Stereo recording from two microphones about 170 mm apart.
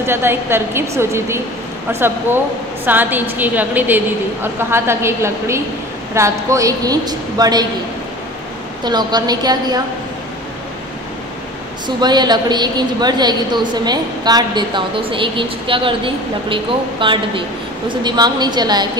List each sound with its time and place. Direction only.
0.0 s a woman's voice: 15° right (ahead or behind)
8.8 s a woman's voice: 25° right (ahead or behind)
12.0 s a woman's voice: 25° right (ahead or behind)